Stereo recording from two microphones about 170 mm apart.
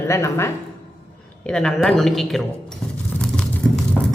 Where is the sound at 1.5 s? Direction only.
5° left (ahead or behind).